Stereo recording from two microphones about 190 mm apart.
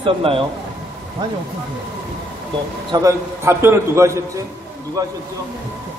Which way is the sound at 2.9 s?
15° right (ahead or behind).